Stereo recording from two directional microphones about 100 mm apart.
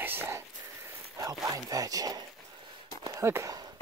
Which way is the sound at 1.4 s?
35° right (ahead or behind).